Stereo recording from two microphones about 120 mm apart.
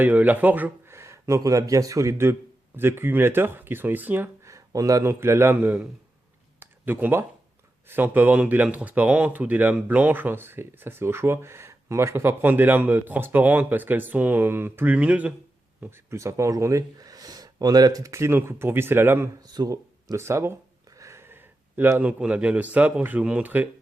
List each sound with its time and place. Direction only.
0.0 s speech: 15° right (ahead or behind)
6.6 s a sound: 15° right (ahead or behind)
7.9 s speech: 15° right (ahead or behind)
19.4 s speech: 35° right (ahead or behind); by 23.6 s 15° right (ahead or behind)